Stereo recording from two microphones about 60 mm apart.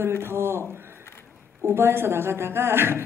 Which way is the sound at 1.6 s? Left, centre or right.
Right.